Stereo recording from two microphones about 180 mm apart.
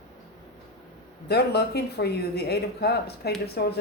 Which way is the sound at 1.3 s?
65° left (ahead or behind).